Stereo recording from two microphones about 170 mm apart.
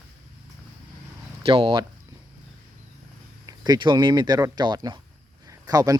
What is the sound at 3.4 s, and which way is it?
Speech, 25° right (ahead or behind).